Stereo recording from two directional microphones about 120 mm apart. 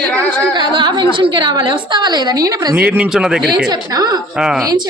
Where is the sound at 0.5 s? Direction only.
40° right (ahead or behind).